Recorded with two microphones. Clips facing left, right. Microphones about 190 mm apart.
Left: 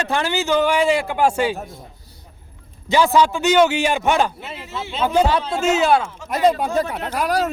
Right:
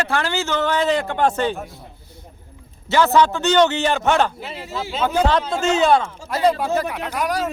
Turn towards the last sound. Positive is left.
turn(degrees=35)  # may be behind; listen again after turning